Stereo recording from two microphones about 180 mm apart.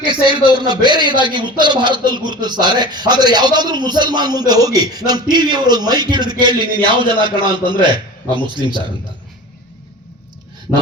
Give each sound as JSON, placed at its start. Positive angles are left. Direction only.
{"t": 0.0, "sound": "a man's voice", "side_deg": -25}